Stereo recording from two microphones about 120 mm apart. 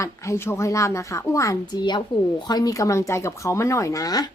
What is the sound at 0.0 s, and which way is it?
A woman's voice, 25° left (ahead or behind).